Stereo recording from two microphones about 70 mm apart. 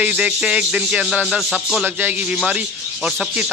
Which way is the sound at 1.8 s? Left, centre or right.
Right.